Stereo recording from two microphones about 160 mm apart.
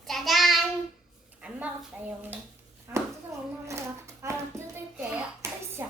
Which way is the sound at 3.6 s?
20° right (ahead or behind).